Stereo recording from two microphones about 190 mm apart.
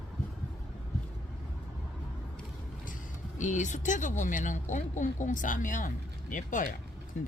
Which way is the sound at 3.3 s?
40° left (ahead or behind).